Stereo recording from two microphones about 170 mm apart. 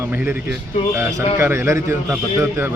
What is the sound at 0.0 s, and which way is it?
Speech, 10° right (ahead or behind).